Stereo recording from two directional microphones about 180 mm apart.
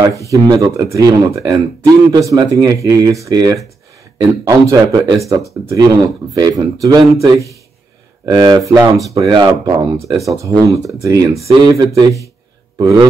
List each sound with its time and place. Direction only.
0.0 s a man's voice: 20° right (ahead or behind)